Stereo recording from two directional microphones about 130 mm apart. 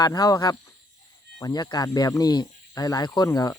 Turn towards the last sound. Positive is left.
turn(degrees=30)  # may be behind; listen again after turning